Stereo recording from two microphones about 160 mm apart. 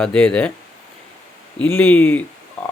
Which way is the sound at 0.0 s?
5° left (ahead or behind).